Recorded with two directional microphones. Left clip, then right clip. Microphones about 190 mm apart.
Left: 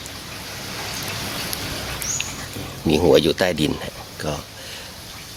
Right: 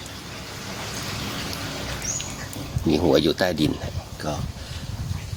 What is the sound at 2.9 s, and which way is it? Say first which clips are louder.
Speech: left 4 dB; 15° left (ahead or behind).